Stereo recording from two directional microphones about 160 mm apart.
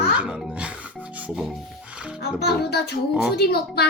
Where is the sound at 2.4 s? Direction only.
90° left.